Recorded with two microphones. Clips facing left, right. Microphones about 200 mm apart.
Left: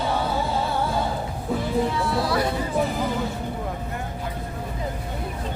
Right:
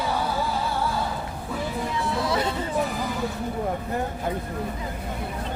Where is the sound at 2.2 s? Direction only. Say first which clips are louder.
Even; 20° right (ahead or behind).